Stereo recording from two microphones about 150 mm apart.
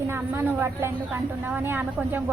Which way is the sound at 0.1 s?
15° right (ahead or behind).